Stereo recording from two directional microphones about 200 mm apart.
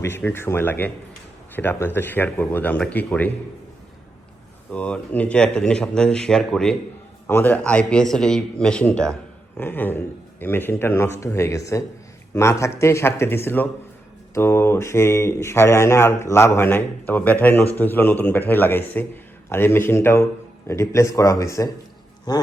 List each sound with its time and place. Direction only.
0.0 s speech: 10° left (ahead or behind)
4.7 s speech: 5° left (ahead or behind)